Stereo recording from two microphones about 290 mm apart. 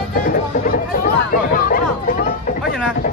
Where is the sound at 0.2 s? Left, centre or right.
Left.